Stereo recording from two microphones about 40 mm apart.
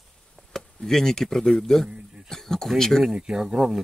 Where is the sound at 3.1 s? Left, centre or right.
Centre.